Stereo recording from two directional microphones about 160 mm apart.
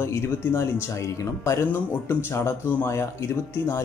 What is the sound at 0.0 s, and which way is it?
Speech, 15° left (ahead or behind).